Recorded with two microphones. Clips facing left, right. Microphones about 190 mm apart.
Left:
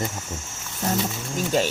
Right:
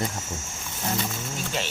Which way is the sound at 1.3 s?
40° left (ahead or behind).